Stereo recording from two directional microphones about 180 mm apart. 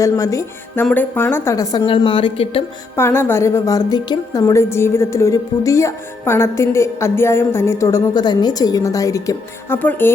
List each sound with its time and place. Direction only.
0.0 s a woman's voice: 20° left (ahead or behind)
2.9 s a woman's voice: 15° left (ahead or behind)